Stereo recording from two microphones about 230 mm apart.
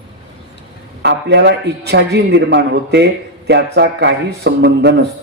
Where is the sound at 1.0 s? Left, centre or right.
Right.